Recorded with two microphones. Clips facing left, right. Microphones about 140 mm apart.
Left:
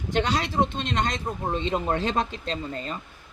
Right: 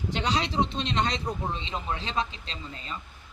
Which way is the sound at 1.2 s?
10° left (ahead or behind).